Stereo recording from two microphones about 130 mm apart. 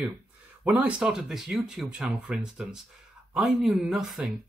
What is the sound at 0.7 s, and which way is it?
Speech, 10° right (ahead or behind).